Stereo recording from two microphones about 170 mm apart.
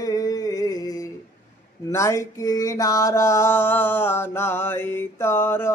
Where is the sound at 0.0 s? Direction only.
20° left (ahead or behind).